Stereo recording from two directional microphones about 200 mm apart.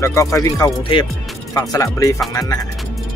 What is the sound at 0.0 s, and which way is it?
Speech, 15° left (ahead or behind).